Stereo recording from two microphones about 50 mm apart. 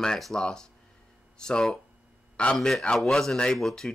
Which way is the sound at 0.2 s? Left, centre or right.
Centre.